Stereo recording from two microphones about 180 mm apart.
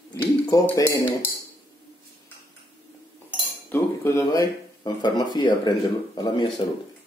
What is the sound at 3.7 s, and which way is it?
Speech, 15° left (ahead or behind).